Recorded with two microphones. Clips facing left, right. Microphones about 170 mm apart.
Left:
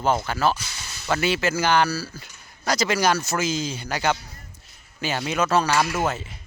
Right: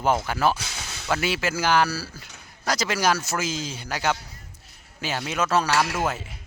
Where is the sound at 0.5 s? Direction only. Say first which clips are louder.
Right 1 dB; 90° right.